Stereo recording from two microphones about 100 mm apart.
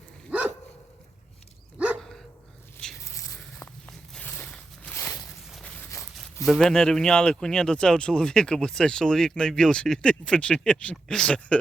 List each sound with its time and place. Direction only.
0.3 s dog: 15° right (ahead or behind)
2.0 s dog: 5° left (ahead or behind)
3.0 s a sound: 30° left (ahead or behind)
4.2 s a sound: 15° left (ahead or behind)
4.9 s walk: 25° left (ahead or behind)
5.6 s walk: 15° left (ahead or behind)
6.4 s speech: 5° left (ahead or behind)